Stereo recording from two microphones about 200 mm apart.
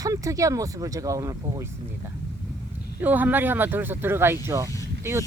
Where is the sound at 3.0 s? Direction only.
10° right (ahead or behind).